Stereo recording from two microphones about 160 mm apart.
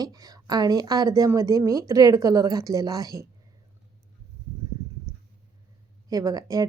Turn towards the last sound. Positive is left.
turn(degrees=-25)  # may be behind; listen again after turning